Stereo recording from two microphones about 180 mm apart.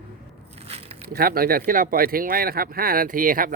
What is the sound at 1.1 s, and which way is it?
Speech, 55° right (ahead or behind).